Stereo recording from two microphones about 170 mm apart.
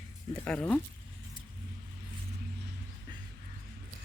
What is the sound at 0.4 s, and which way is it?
Speech, 5° left (ahead or behind).